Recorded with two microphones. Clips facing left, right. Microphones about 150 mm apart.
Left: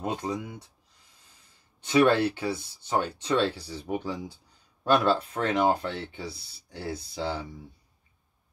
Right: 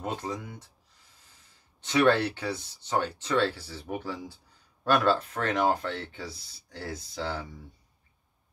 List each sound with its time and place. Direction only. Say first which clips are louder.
0.0 s speech: left 3 dB; 15° left (ahead or behind)
1.9 s speech: left 2 dB; 10° left (ahead or behind)